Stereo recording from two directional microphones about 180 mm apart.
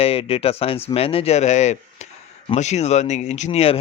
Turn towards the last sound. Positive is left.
turn(degrees=35)  # may be behind; listen again after turning